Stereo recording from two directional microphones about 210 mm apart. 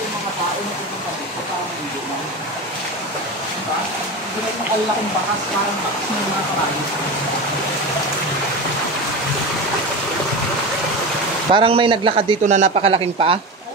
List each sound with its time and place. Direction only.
11.5 s a man's voice: 25° right (ahead or behind)